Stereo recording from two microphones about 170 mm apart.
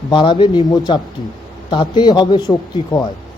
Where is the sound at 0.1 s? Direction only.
30° left (ahead or behind).